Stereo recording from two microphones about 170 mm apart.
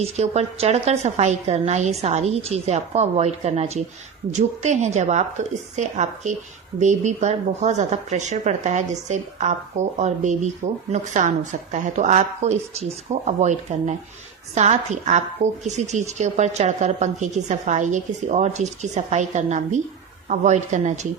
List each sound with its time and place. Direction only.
0.0 s a woman's voice: 40° right (ahead or behind)